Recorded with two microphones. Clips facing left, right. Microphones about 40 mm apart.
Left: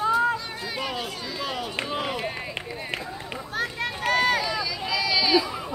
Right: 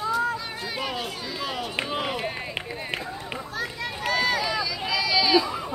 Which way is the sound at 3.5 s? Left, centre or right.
Left.